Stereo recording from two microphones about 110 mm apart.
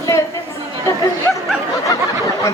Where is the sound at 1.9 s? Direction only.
30° left (ahead or behind).